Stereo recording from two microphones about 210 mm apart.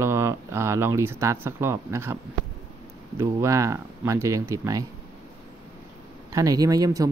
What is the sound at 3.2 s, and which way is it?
Speech, 15° right (ahead or behind).